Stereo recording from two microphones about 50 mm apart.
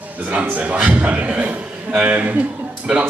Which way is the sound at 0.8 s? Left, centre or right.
Right.